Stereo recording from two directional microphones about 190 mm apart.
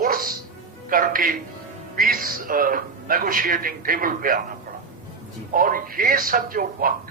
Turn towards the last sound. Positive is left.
turn(degrees=-50)  # may be behind; listen again after turning